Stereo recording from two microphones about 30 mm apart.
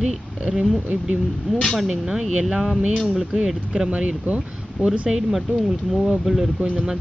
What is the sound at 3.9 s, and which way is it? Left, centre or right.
Speech, right.